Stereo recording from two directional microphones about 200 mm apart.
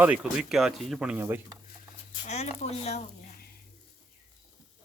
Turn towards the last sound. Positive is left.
turn(degrees=30)  # may be behind; listen again after turning